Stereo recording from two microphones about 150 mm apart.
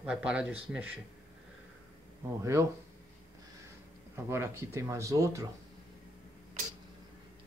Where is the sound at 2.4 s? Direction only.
20° right (ahead or behind).